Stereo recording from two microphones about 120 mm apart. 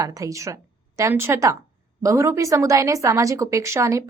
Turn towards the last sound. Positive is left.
turn(degrees=-25)  # may be behind; listen again after turning